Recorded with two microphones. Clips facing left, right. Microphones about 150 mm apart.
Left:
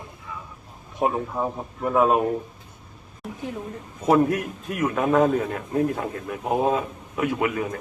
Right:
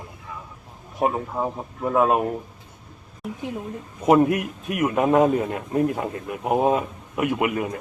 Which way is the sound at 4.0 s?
15° right (ahead or behind).